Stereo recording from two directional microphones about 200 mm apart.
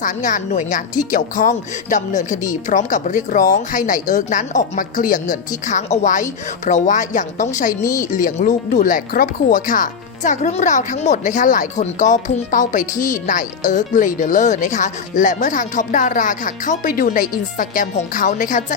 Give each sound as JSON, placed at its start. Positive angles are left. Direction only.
{"t": 0.0, "sound": "speech", "side_deg": 40}
{"t": 7.8, "sound": "a woman's voice", "side_deg": 15}
{"t": 8.1, "sound": "speech", "side_deg": 40}